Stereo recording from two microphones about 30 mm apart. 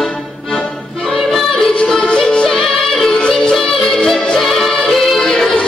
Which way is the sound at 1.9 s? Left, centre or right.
Left.